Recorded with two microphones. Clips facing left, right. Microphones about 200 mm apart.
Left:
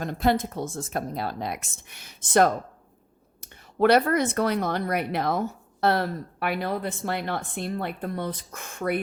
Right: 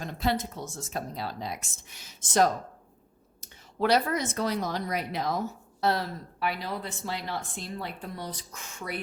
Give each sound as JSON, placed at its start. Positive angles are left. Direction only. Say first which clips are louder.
{"t": 0.0, "sound": "speech", "louder": "left 5 dB", "side_deg": 55}